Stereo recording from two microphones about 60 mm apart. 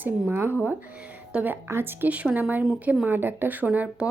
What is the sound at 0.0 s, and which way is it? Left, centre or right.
Speech, right.